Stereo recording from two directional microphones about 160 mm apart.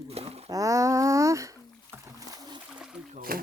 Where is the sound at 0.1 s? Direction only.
40° right (ahead or behind).